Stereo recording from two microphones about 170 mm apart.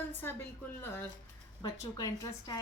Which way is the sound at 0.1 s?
15° left (ahead or behind).